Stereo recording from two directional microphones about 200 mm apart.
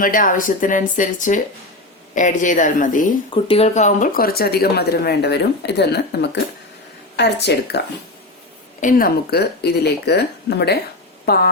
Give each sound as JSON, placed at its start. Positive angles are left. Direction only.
{"t": 0.0, "sound": "speech", "side_deg": 40}
{"t": 3.3, "sound": "a woman's voice", "side_deg": 25}
{"t": 8.8, "sound": "a woman's voice", "side_deg": 45}